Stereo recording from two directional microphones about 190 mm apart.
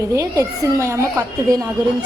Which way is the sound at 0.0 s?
15° right (ahead or behind).